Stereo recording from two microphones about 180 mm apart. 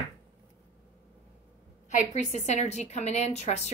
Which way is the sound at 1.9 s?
40° left (ahead or behind).